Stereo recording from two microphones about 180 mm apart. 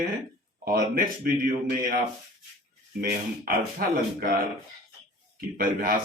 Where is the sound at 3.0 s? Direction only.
55° right (ahead or behind).